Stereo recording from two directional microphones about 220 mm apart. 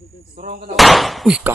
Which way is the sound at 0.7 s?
Centre (ahead or behind).